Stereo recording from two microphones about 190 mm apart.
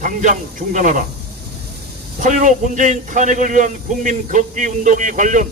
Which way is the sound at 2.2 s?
40° right (ahead or behind).